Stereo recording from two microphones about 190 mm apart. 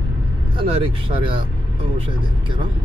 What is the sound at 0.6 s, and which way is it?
Speech, 30° right (ahead or behind).